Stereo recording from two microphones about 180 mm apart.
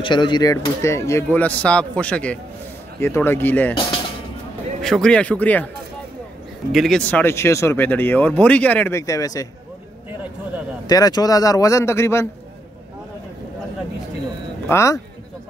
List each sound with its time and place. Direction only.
0.0 s speech: 25° left (ahead or behind); by 3.7 s 10° left (ahead or behind)
4.8 s speech: 5° left (ahead or behind)
6.7 s speech: centre (ahead or behind); by 9.5 s 20° left (ahead or behind)
10.9 s speech: 20° left (ahead or behind)
14.7 s speech: 15° left (ahead or behind)